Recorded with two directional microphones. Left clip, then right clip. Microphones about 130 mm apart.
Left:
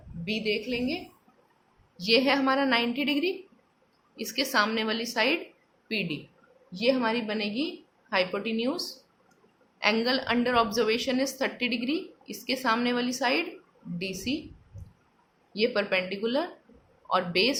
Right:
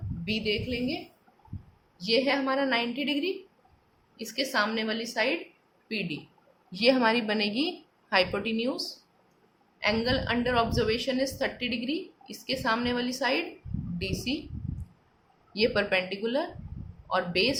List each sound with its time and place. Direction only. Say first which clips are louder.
0.3 s speech: left 1 dB; 5° left (ahead or behind)
2.0 s a woman's voice: left 2 dB; 30° left (ahead or behind)
6.7 s a woman's voice: right 3 dB; 10° right (ahead or behind); by 14.4 s 10° left (ahead or behind)
15.5 s speech: even; centre (ahead or behind)